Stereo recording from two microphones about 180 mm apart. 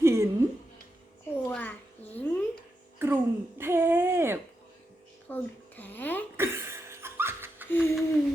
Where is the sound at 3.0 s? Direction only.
15° right (ahead or behind).